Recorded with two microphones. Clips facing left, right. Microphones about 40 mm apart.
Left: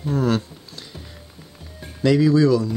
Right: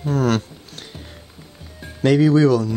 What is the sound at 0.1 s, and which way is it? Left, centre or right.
Music, right.